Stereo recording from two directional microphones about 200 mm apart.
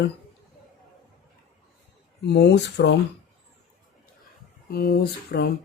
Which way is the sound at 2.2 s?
60° left (ahead or behind).